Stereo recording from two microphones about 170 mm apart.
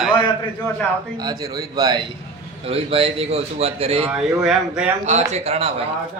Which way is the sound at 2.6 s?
35° right (ahead or behind).